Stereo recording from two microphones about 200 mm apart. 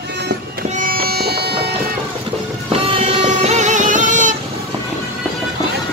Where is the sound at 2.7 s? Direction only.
30° right (ahead or behind).